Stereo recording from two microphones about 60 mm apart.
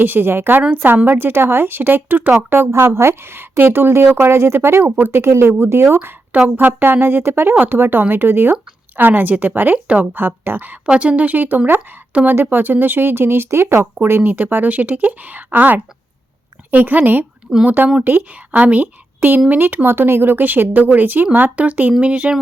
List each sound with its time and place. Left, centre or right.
0.0 s a woman's voice: right
9.7 s speech: right
10.8 s a woman's voice: centre; by 14.2 s right
14.2 s a woman's voice: right